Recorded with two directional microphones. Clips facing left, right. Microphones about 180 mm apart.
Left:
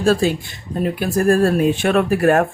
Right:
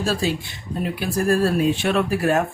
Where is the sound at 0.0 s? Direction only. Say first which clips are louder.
Left 6 dB; 50° left (ahead or behind).